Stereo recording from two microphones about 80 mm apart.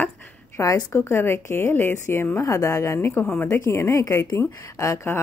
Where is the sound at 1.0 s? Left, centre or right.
Left.